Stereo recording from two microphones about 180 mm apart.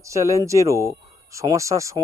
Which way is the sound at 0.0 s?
15° right (ahead or behind).